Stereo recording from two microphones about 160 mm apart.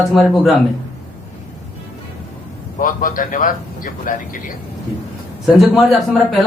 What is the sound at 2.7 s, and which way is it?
A man's voice, 55° left (ahead or behind).